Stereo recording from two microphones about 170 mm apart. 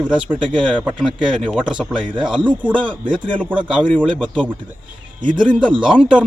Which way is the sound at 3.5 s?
10° right (ahead or behind).